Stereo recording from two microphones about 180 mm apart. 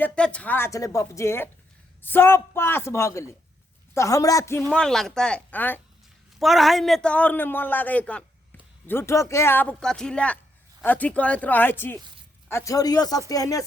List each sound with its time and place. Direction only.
0.0 s a man's voice: 5° left (ahead or behind)
4.7 s speech: 5° left (ahead or behind)
6.4 s a man's voice: centre (ahead or behind); by 13.6 s 20° left (ahead or behind)